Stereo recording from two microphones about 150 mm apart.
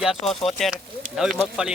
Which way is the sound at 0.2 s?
45° left (ahead or behind).